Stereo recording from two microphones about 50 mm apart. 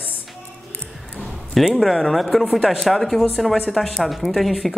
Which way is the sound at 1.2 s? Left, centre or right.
Centre.